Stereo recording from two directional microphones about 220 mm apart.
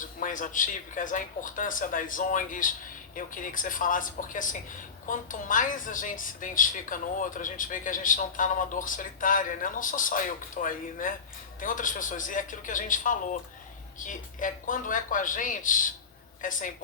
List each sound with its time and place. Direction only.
0.0 s a woman's voice: 35° left (ahead or behind)